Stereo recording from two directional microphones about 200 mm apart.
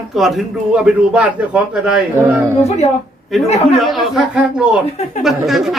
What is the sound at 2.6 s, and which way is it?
Speech, 35° left (ahead or behind).